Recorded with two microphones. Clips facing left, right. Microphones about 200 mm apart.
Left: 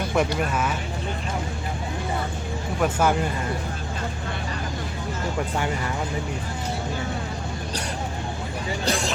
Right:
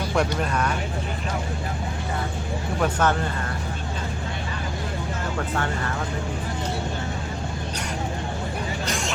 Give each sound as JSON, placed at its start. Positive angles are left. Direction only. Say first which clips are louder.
{"t": 0.2, "sound": "speech", "louder": "even", "side_deg": 5}
{"t": 2.8, "sound": "speech", "louder": "left 1 dB", "side_deg": 10}